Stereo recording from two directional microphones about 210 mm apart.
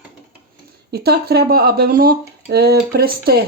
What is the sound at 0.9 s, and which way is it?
Speech, 50° right (ahead or behind).